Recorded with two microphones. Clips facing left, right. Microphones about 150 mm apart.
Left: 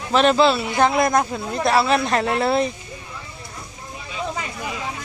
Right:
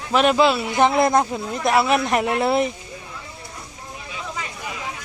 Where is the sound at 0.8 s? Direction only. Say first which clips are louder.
Right 2 dB; 20° right (ahead or behind).